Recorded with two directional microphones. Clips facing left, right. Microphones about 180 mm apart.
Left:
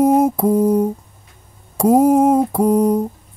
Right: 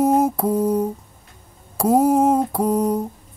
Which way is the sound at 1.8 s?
10° left (ahead or behind).